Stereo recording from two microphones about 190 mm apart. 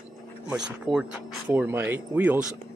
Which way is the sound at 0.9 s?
25° right (ahead or behind).